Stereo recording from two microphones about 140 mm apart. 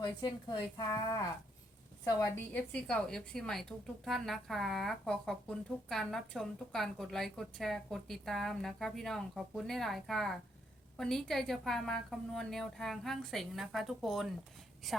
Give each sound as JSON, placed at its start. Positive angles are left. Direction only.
{"t": 0.0, "sound": "speech", "side_deg": 30}
{"t": 2.5, "sound": "a woman's voice", "side_deg": 10}